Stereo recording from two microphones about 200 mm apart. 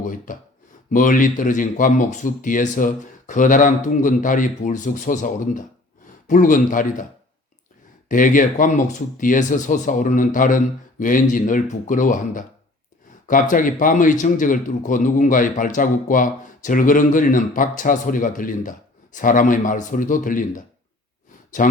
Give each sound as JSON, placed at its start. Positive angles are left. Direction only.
{"t": 0.0, "sound": "a man's voice", "side_deg": 40}
{"t": 8.0, "sound": "a man's voice", "side_deg": 40}
{"t": 21.6, "sound": "speech", "side_deg": 45}